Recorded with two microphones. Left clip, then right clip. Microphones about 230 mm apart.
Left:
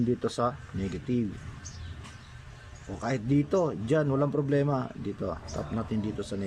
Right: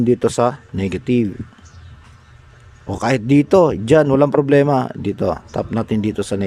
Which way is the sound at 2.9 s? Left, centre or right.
Right.